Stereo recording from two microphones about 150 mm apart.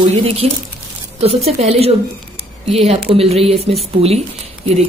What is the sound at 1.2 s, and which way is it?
Speech, 45° right (ahead or behind).